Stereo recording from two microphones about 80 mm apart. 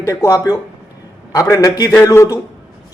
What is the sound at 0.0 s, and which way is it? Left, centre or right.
Speech, left.